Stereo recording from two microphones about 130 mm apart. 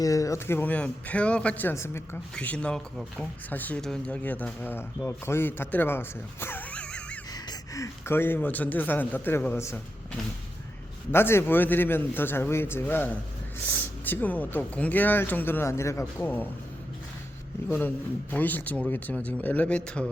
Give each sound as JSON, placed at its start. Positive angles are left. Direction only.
{"t": 0.0, "sound": "speech", "side_deg": 25}
{"t": 7.3, "sound": "speech", "side_deg": 30}
{"t": 11.1, "sound": "speech", "side_deg": 20}
{"t": 17.7, "sound": "speech", "side_deg": 15}